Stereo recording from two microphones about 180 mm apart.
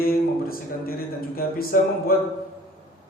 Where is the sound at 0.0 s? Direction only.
55° left (ahead or behind).